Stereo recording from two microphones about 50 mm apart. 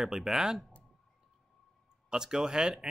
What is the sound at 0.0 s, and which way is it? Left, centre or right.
Speech, centre.